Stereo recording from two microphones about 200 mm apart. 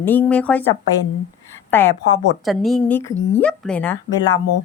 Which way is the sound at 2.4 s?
Centre (ahead or behind).